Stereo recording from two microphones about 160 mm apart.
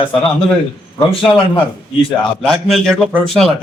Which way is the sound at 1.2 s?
30° left (ahead or behind).